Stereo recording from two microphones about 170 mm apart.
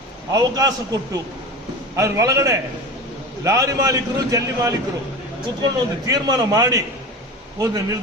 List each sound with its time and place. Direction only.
0.3 s a man's voice: 20° right (ahead or behind)